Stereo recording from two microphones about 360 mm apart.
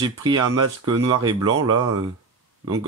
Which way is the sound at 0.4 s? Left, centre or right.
Right.